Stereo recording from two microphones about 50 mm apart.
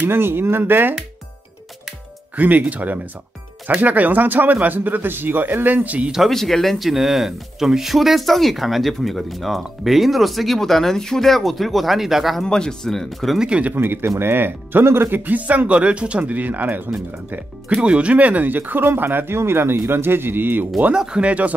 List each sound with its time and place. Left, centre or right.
0.0 s speech: right
2.3 s speech: right
6.3 s speech: centre
12.4 s speech: centre
13.4 s speech: right
14.2 s speech: right
17.7 s speech: right
20.9 s speech: centre
21.3 s speech: right